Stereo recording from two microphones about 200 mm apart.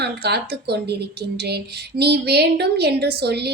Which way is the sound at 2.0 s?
55° right (ahead or behind).